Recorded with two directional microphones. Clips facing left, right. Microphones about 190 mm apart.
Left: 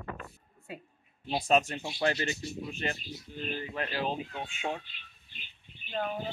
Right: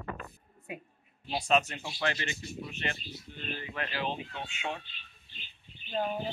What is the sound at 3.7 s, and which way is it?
Speech, 40° left (ahead or behind).